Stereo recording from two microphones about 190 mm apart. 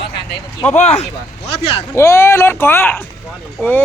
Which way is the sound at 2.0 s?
15° left (ahead or behind).